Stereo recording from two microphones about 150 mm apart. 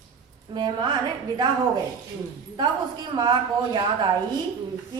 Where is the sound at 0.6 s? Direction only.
30° right (ahead or behind).